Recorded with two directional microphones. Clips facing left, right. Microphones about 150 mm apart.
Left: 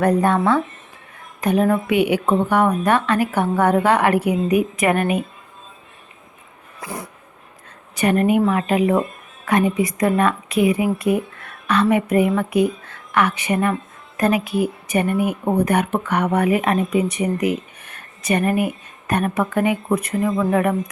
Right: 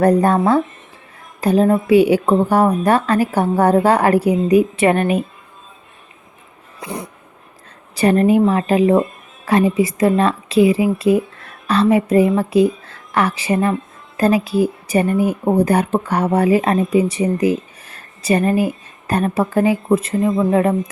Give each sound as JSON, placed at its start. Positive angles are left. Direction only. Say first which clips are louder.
{"t": 0.0, "sound": "speech", "louder": "right 3 dB", "side_deg": -35}
{"t": 6.7, "sound": "dog", "louder": "right 3 dB", "side_deg": -20}
{"t": 7.9, "sound": "speech", "louder": "right 4 dB", "side_deg": -35}